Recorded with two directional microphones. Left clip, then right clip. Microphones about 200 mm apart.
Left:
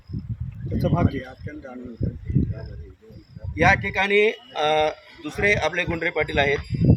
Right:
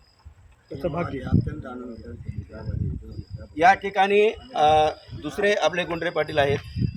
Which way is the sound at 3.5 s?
15° right (ahead or behind).